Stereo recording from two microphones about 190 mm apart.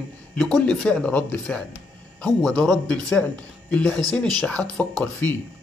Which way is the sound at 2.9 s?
5° left (ahead or behind).